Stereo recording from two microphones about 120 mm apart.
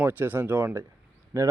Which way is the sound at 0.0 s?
15° right (ahead or behind).